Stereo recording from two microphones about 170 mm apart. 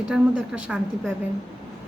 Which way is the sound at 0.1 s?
5° right (ahead or behind).